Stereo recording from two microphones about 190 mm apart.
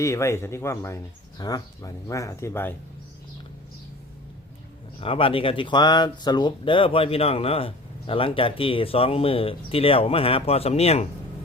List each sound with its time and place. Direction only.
0.0 s speech: 15° left (ahead or behind)
4.9 s speech: 30° left (ahead or behind)